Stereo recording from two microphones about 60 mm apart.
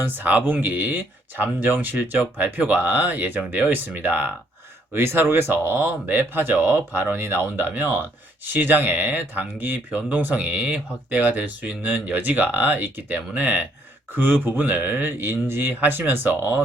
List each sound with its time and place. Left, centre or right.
0.0 s speech: right